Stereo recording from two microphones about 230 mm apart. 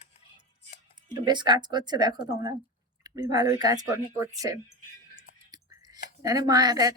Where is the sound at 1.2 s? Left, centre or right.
Centre.